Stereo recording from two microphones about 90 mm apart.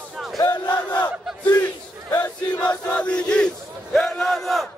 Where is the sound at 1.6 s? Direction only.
25° left (ahead or behind).